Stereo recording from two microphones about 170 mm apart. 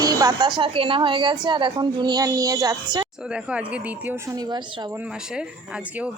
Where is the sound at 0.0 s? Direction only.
20° right (ahead or behind).